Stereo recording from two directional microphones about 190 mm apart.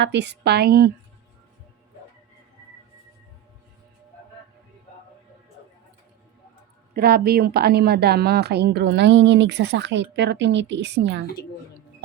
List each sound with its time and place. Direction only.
0.0 s speech: 65° right (ahead or behind)
6.9 s speech: 55° right (ahead or behind)